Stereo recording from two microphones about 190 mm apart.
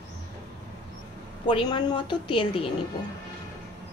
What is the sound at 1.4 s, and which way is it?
A woman's voice, 25° left (ahead or behind).